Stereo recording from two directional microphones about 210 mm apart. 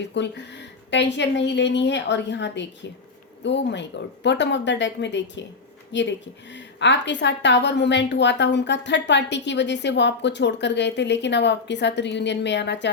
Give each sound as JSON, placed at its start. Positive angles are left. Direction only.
{"t": 0.0, "sound": "a woman's voice", "side_deg": 55}